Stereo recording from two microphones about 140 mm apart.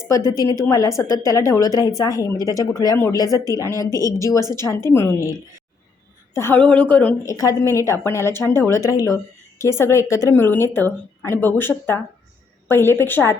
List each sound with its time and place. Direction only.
0.3 s a woman's voice: 25° left (ahead or behind)
6.3 s a woman's voice: 15° left (ahead or behind)
7.3 s a woman's voice: 25° left (ahead or behind)